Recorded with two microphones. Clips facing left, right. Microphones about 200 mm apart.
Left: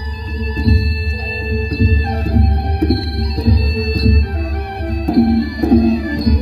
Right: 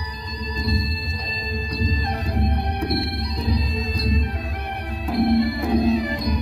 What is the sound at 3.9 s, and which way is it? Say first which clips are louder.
Music: left 8 dB; 35° left (ahead or behind).